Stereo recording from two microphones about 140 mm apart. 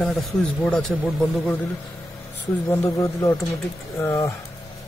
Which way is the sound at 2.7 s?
20° left (ahead or behind).